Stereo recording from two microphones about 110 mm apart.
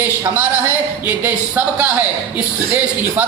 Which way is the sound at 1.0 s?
15° right (ahead or behind).